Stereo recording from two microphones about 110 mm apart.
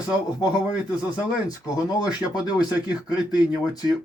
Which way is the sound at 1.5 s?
35° left (ahead or behind).